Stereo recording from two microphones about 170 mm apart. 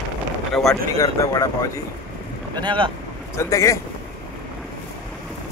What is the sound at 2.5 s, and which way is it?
Speech, 30° right (ahead or behind).